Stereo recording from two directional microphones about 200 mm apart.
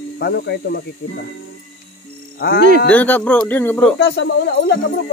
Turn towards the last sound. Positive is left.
turn(degrees=55)  # may be behind; listen again after turning